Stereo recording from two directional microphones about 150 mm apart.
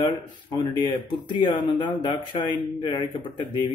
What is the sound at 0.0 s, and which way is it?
A man's voice, 30° left (ahead or behind).